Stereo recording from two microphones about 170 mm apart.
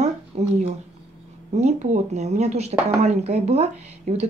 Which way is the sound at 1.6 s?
40° right (ahead or behind).